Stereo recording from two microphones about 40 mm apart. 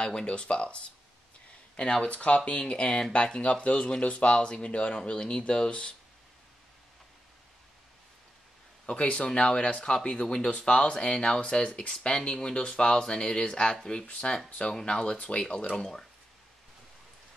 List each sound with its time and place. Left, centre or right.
0.0 s speech: left
8.8 s speech: left